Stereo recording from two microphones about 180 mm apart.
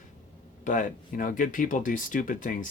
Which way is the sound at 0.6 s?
45° left (ahead or behind).